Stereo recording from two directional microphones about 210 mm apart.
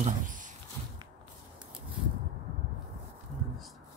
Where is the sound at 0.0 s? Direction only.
40° right (ahead or behind).